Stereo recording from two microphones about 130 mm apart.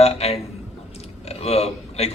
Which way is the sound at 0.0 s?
55° left (ahead or behind).